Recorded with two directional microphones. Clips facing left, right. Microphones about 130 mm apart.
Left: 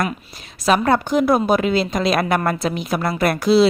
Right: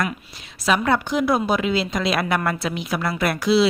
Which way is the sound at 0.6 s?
45° left (ahead or behind).